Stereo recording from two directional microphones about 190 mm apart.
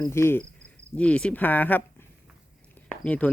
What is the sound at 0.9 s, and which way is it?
Speech, 5° left (ahead or behind).